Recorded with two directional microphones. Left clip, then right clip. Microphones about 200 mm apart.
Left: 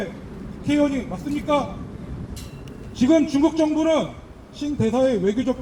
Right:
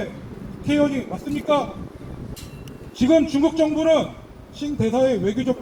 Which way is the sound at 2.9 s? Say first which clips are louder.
Right 1 dB; 35° right (ahead or behind).